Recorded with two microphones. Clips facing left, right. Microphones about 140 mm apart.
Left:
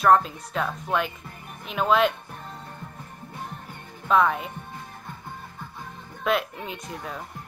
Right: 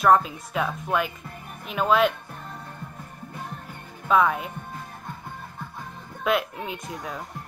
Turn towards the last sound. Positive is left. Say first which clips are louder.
# right 1 dB
turn(degrees=0)  # may be behind; listen again after turning